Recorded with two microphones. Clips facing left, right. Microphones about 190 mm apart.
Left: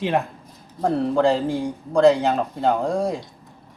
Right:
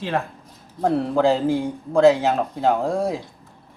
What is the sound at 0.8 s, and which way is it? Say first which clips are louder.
Speech: even; centre (ahead or behind).